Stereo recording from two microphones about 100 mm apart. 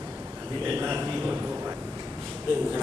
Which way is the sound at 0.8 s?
20° right (ahead or behind).